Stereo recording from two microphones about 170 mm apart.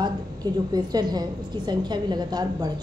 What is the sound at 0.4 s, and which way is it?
A woman's voice, 25° right (ahead or behind).